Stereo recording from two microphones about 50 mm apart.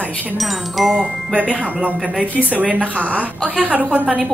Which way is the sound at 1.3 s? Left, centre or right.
Right.